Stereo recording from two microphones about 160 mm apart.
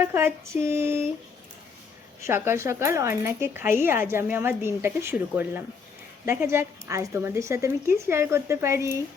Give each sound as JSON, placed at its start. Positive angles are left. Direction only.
{"t": 0.0, "sound": "speech", "side_deg": -15}
{"t": 2.2, "sound": "speech", "side_deg": -15}